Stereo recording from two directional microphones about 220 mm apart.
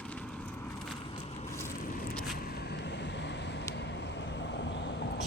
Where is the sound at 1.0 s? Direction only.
25° left (ahead or behind).